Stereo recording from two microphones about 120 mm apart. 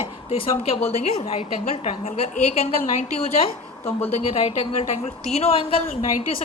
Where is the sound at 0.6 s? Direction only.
60° left (ahead or behind).